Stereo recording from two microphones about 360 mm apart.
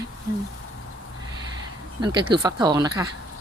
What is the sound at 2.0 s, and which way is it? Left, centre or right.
Speech, centre.